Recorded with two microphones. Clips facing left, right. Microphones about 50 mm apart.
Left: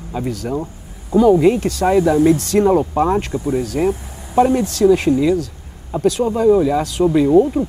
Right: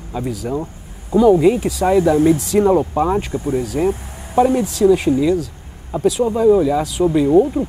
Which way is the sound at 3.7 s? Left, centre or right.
Centre.